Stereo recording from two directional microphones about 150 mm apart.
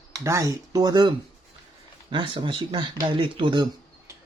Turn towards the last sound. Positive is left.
turn(degrees=-30)  # may be behind; listen again after turning